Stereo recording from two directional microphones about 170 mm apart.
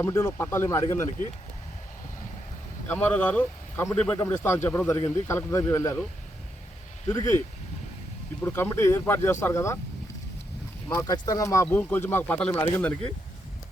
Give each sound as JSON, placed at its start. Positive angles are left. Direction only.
{"t": 0.0, "sound": "speech", "side_deg": 15}
{"t": 2.8, "sound": "speech", "side_deg": 10}
{"t": 7.1, "sound": "speech", "side_deg": 10}
{"t": 10.8, "sound": "speech", "side_deg": 20}